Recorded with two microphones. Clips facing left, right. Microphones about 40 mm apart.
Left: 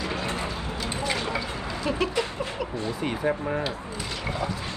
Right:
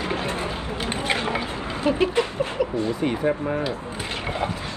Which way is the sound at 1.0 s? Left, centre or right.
Right.